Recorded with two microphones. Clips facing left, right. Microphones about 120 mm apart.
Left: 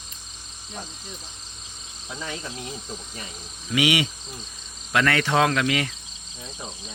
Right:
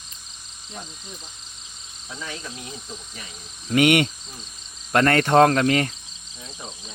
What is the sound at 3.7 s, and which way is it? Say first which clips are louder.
Speech: right 5 dB; 50° right (ahead or behind).